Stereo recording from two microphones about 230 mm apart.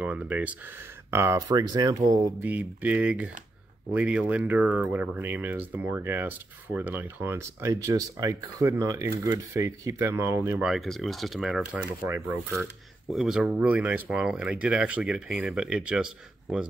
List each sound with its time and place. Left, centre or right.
0.0 s speech: centre